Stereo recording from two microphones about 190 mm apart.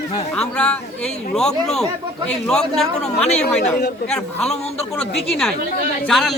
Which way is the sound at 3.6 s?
50° left (ahead or behind).